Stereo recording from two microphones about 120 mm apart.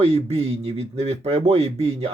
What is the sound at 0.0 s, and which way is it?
Speech, 55° right (ahead or behind).